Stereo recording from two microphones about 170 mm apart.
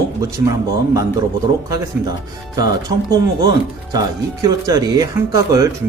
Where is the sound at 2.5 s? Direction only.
20° right (ahead or behind).